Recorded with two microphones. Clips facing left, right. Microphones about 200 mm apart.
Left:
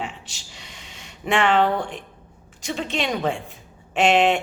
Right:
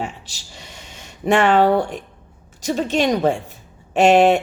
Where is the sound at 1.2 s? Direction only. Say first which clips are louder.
Right 4 dB; 40° right (ahead or behind).